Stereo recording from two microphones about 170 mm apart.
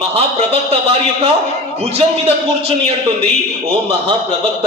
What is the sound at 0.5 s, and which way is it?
Speech, 35° right (ahead or behind).